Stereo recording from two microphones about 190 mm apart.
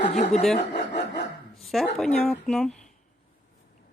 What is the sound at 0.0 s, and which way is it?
Speech, 35° left (ahead or behind).